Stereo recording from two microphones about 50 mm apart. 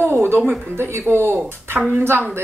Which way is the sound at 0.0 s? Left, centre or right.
Right.